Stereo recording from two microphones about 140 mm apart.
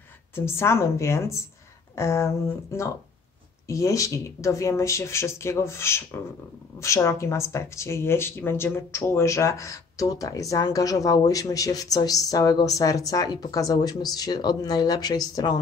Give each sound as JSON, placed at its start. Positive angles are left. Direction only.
{"t": 0.3, "sound": "speech", "side_deg": 15}